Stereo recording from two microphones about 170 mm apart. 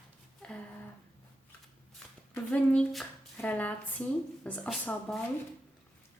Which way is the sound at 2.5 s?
5° left (ahead or behind).